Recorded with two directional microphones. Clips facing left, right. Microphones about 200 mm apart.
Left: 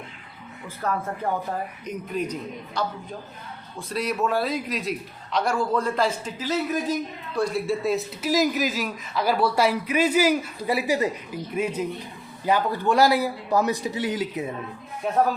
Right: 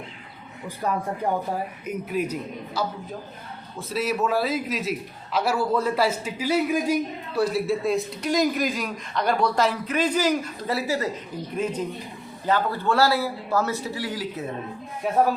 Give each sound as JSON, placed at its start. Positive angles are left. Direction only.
{"t": 0.8, "sound": "a man's voice", "side_deg": -15}
{"t": 15.0, "sound": "a man's voice", "side_deg": -5}